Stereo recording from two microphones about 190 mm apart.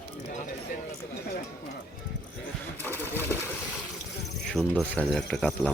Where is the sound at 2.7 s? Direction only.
10° left (ahead or behind).